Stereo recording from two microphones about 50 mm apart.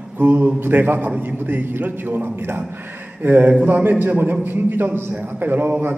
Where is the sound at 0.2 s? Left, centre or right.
Right.